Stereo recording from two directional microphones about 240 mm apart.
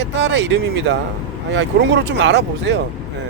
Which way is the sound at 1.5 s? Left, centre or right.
Right.